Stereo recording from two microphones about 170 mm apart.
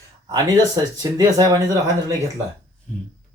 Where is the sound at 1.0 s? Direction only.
20° right (ahead or behind).